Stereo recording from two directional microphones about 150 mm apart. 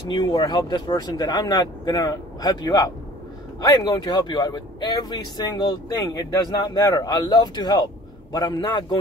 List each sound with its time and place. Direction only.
0.1 s speech: 30° left (ahead or behind)